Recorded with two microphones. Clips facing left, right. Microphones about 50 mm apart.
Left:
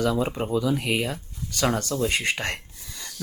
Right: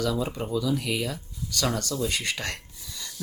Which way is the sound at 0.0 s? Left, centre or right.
Left.